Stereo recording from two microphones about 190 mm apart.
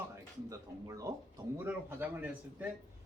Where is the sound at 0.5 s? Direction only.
20° right (ahead or behind).